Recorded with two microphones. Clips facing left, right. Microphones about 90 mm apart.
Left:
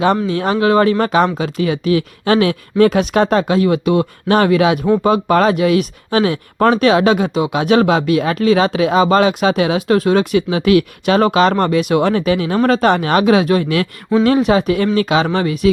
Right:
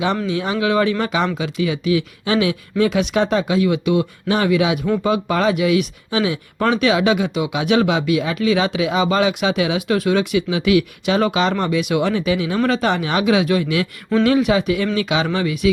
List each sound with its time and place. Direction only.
0.0 s speech: 45° left (ahead or behind)